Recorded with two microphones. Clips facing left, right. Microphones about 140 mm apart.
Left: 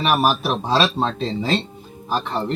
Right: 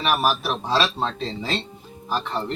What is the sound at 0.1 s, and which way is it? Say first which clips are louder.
Speech: left 3 dB; 30° left (ahead or behind).